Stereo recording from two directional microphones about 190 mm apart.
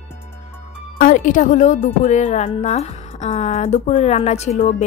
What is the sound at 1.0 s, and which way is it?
A woman's voice, 45° left (ahead or behind).